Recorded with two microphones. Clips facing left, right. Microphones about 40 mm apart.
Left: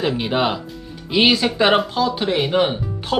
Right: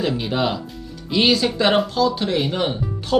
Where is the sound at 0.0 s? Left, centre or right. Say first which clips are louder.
Left 2 dB; left.